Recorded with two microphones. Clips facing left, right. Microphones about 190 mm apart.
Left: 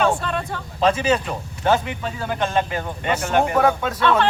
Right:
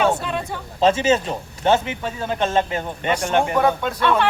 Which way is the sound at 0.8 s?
25° right (ahead or behind).